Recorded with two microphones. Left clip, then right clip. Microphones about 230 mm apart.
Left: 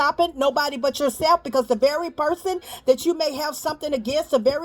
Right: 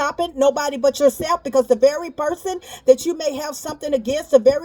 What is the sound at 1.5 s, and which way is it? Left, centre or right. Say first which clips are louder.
Speech: right 4 dB; left.